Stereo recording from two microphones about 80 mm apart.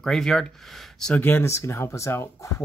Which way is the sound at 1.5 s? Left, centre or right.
Left.